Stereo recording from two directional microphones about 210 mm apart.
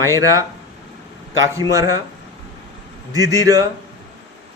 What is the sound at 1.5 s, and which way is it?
Speech, 15° right (ahead or behind).